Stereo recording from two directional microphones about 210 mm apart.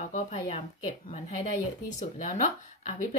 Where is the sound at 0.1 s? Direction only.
30° left (ahead or behind).